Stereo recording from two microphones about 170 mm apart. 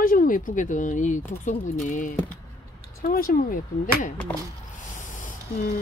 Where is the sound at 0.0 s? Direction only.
55° left (ahead or behind).